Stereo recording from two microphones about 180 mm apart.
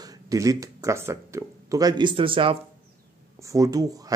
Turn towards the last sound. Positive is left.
turn(degrees=-20)  # may be behind; listen again after turning